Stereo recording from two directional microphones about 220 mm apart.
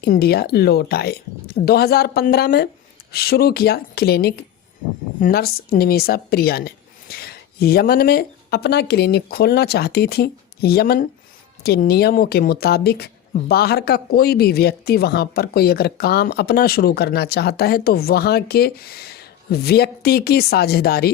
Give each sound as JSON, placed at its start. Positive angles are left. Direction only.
{"t": 0.0, "sound": "speech", "side_deg": 45}